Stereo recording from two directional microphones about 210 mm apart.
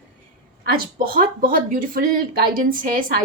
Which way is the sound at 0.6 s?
45° right (ahead or behind).